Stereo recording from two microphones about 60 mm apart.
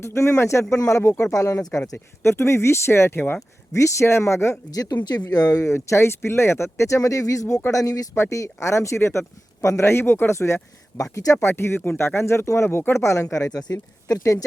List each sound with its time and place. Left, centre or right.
0.0 s speech: left
0.7 s speech: left
2.2 s speech: left
4.7 s speech: left
5.6 s speech: left
7.7 s speech: left
8.1 s speech: left
11.0 s speech: left
11.3 s speech: left